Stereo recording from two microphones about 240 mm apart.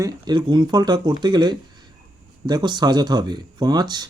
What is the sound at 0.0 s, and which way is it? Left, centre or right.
Speech, centre.